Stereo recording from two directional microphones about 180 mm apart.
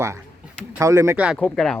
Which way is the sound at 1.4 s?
5° left (ahead or behind).